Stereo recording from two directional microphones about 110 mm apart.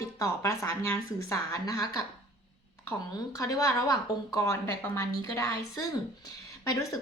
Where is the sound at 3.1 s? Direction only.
30° left (ahead or behind).